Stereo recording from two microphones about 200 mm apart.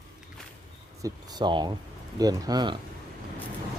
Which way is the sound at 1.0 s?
20° right (ahead or behind).